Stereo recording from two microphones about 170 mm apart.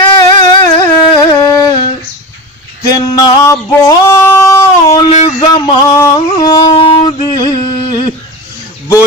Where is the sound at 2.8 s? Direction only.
20° left (ahead or behind).